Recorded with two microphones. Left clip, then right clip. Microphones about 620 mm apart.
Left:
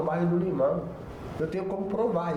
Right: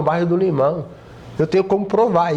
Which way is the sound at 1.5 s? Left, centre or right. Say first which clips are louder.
Right 16 dB; right.